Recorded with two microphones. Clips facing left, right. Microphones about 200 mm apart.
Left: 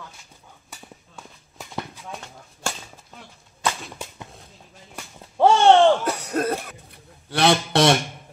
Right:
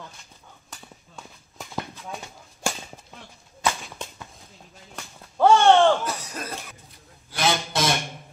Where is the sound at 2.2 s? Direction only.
15° right (ahead or behind).